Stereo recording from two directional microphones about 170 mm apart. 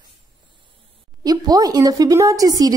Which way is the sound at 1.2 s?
20° right (ahead or behind).